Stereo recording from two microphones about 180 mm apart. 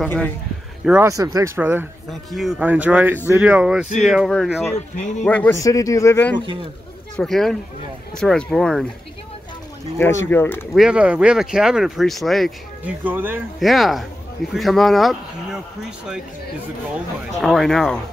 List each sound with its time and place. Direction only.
0.0 s speech: 5° left (ahead or behind)
1.0 s speech: 20° right (ahead or behind)
2.0 s speech: centre (ahead or behind)
4.7 s speech: 40° left (ahead or behind)
5.2 s speech: 5° left (ahead or behind)
5.6 s speech: 20° left (ahead or behind)
7.2 s speech: centre (ahead or behind)
9.9 s speech: 10° left (ahead or behind)
10.7 s speech: 5° right (ahead or behind)
13.6 s speech: centre (ahead or behind)
17.4 s speech: centre (ahead or behind)